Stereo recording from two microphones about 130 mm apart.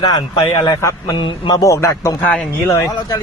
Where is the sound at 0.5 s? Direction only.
25° left (ahead or behind).